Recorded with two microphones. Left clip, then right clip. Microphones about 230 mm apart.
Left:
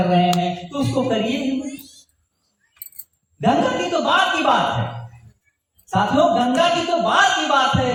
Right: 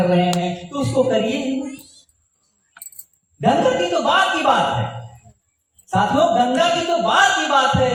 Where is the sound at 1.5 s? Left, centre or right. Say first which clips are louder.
Even; right.